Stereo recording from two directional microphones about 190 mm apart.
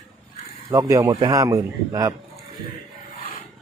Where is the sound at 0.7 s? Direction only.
15° right (ahead or behind).